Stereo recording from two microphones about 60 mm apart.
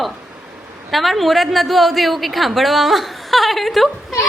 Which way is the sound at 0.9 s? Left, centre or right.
Centre.